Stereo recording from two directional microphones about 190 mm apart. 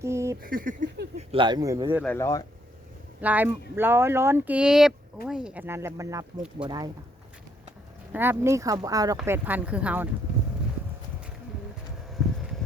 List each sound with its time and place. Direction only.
0.0 s a sound: 15° right (ahead or behind)
0.4 s speech: 45° right (ahead or behind)
1.1 s speech: 30° right (ahead or behind)
2.0 s speech: 15° left (ahead or behind)
3.2 s speech: 10° right (ahead or behind)
8.1 s speech: 10° right (ahead or behind)
12.2 s a sound: centre (ahead or behind)